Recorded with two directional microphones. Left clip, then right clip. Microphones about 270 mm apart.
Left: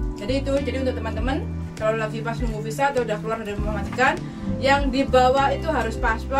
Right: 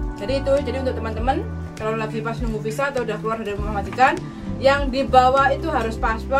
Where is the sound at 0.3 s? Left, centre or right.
Centre.